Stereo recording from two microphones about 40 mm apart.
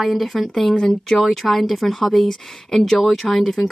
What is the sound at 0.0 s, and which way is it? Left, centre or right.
A woman's voice, centre.